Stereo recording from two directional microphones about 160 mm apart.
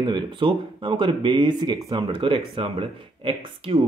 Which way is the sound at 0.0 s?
30° right (ahead or behind).